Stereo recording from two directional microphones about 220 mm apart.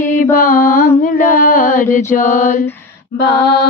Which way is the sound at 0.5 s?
10° left (ahead or behind).